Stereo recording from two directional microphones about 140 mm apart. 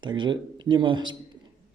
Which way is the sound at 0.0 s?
35° right (ahead or behind).